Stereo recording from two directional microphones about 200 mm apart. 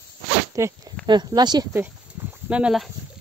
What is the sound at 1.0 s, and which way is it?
Speech, 20° right (ahead or behind).